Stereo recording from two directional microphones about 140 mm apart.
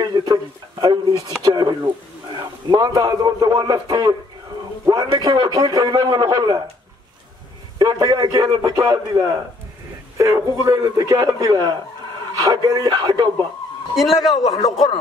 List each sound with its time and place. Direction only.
0.0 s a man's voice: 30° right (ahead or behind)
7.8 s a man's voice: 30° right (ahead or behind)
13.9 s a man's voice: centre (ahead or behind)
14.4 s a man's voice: 45° left (ahead or behind)